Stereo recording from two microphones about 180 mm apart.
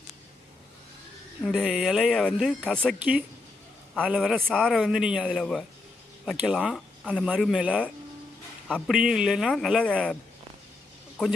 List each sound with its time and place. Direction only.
1.5 s speech: 5° right (ahead or behind)
3.0 s speech: 5° right (ahead or behind)
11.2 s speech: 5° left (ahead or behind)